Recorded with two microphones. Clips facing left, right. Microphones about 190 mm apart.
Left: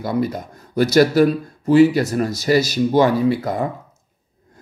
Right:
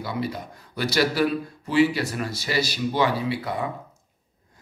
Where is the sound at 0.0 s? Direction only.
45° left (ahead or behind).